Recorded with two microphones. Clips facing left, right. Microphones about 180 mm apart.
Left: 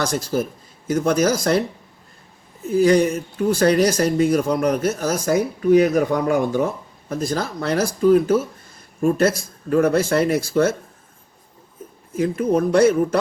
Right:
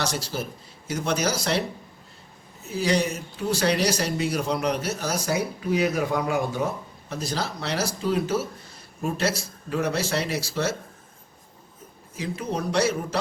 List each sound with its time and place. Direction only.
0.0 s speech: 50° left (ahead or behind)
2.6 s speech: 50° left (ahead or behind)
12.1 s speech: 55° left (ahead or behind)